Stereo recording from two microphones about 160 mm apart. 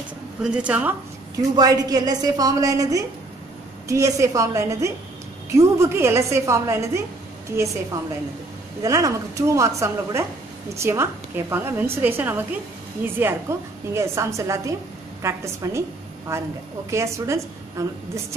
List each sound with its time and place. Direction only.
0.4 s a woman's voice: 5° right (ahead or behind)
1.3 s a woman's voice: 20° right (ahead or behind)
8.8 s a woman's voice: 20° right (ahead or behind)